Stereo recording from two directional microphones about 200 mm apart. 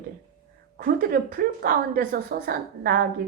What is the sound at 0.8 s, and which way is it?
A woman's voice, 45° right (ahead or behind).